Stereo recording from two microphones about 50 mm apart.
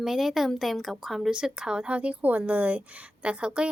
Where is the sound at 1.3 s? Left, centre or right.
Centre.